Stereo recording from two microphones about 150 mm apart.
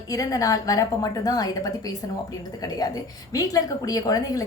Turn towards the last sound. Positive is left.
turn(degrees=25)  # may be behind; listen again after turning